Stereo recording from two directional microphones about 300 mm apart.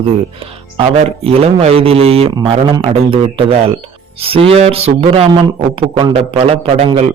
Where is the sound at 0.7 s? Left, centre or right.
Centre.